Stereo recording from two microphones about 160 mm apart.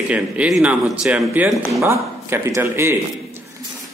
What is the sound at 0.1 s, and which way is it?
Speech, 5° right (ahead or behind).